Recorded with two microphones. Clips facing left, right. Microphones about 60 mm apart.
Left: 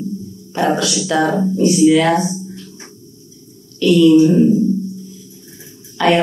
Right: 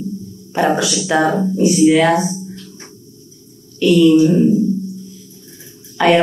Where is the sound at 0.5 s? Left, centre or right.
Right.